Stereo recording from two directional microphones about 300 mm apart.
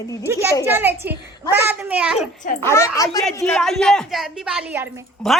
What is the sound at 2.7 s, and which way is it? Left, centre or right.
A woman's voice, centre.